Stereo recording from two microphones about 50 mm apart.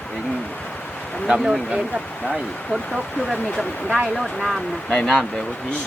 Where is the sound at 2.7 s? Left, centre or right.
Left.